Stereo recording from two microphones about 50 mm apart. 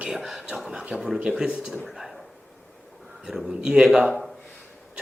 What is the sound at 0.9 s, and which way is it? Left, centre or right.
Speech, centre.